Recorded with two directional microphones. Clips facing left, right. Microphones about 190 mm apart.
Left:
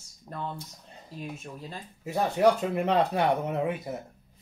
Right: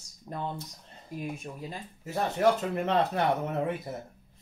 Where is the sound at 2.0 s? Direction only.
15° left (ahead or behind).